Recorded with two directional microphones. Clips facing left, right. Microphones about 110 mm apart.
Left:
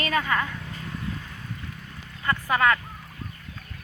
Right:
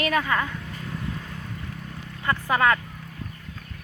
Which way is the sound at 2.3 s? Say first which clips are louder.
Right 1 dB; 20° right (ahead or behind).